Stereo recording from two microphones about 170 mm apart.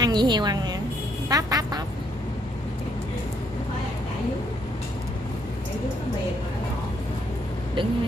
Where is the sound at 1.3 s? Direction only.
20° right (ahead or behind).